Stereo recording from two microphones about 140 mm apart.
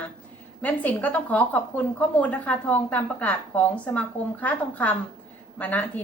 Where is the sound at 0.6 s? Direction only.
10° left (ahead or behind).